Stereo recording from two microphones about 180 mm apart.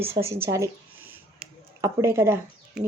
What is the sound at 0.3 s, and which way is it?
Speech, 15° right (ahead or behind).